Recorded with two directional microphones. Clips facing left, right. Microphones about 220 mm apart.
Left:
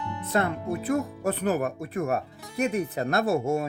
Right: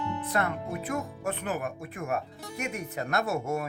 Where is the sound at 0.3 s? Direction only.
30° left (ahead or behind).